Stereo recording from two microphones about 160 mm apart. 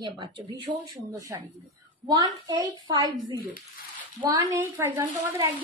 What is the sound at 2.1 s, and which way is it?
Speech, 25° right (ahead or behind).